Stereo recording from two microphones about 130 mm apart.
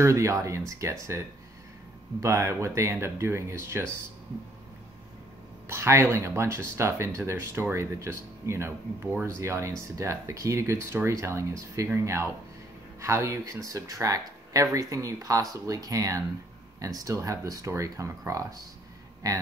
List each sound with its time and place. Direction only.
0.0 s speech: 25° right (ahead or behind)
2.1 s speech: 25° right (ahead or behind)
5.7 s speech: 20° right (ahead or behind)